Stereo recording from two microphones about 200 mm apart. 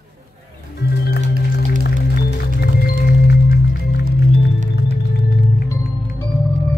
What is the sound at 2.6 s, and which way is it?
Music, 50° left (ahead or behind).